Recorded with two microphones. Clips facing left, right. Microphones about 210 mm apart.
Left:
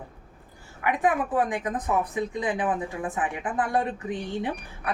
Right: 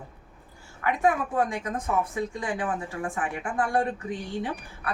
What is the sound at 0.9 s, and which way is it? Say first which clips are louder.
A woman's voice: even; 20° left (ahead or behind).